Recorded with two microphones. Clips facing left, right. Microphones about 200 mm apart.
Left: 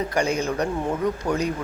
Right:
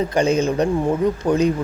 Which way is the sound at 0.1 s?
20° right (ahead or behind).